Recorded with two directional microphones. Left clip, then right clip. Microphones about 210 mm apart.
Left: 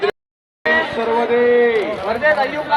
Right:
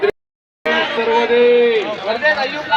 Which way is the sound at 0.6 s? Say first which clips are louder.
Even; 25° right (ahead or behind).